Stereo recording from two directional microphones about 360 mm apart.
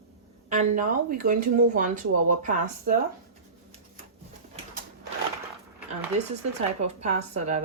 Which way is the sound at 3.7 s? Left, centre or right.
Centre.